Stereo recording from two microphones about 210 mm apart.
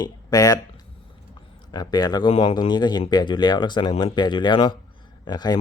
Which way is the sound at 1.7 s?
20° left (ahead or behind).